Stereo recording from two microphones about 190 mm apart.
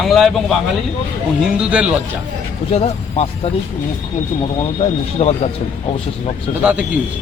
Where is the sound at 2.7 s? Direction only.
35° left (ahead or behind).